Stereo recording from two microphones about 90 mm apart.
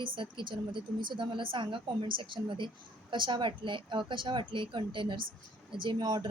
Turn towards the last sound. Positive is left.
turn(degrees=-45)  # may be behind; listen again after turning